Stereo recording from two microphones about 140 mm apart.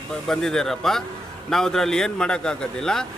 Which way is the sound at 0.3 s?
5° left (ahead or behind).